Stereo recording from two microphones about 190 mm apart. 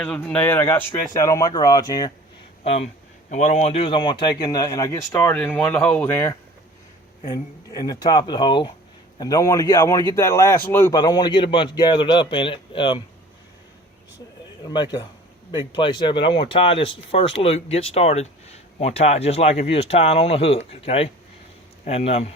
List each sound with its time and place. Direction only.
0.3 s a man's voice: 10° left (ahead or behind)
2.6 s a man's voice: 35° left (ahead or behind)
14.7 s a man's voice: 20° left (ahead or behind)